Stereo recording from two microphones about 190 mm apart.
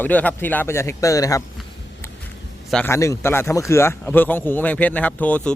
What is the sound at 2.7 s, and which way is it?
A man's voice, 10° left (ahead or behind).